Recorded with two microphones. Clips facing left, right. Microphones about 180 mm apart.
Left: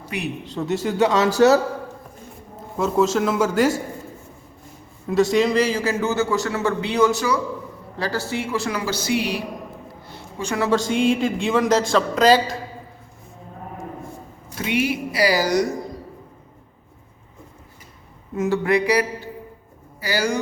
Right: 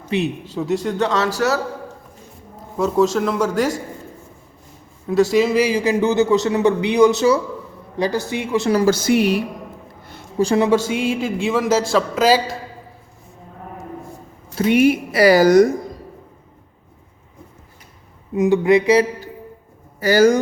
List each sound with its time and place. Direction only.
0.1 s speech: 25° right (ahead or behind)
0.4 s speech: centre (ahead or behind); by 1.5 s 20° left (ahead or behind)
2.7 s a man's voice: centre (ahead or behind)
5.0 s a man's voice: centre (ahead or behind); by 8.7 s 20° right (ahead or behind)
8.7 s a woman's voice: 45° right (ahead or behind)
10.1 s a sound: 40° right (ahead or behind)
10.7 s a man's voice: 10° right (ahead or behind)
14.7 s a woman's voice: 50° right (ahead or behind)
18.3 s speech: 15° right (ahead or behind)
20.0 s a woman's voice: 45° right (ahead or behind)